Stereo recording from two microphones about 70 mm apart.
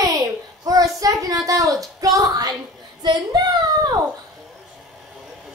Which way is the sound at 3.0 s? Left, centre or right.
Right.